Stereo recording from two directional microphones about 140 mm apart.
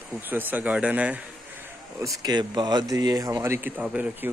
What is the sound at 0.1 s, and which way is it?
Speech, 15° right (ahead or behind).